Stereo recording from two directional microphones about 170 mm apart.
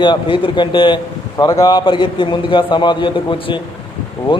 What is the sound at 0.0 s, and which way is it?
A man's voice, 30° left (ahead or behind).